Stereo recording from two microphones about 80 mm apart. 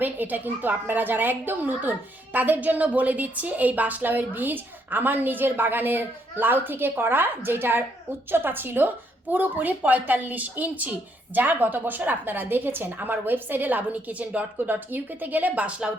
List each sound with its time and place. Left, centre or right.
0.0 s a woman's voice: right